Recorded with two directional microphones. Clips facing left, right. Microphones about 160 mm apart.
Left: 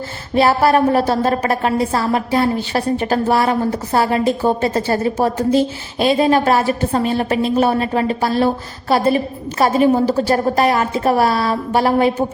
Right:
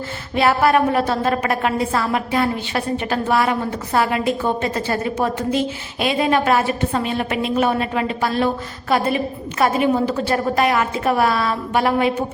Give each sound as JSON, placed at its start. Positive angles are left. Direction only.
{"t": 0.3, "sound": "a woman's voice", "side_deg": 35}